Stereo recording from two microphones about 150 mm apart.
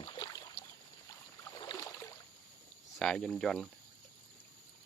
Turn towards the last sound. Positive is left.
turn(degrees=5)  # may be behind; listen again after turning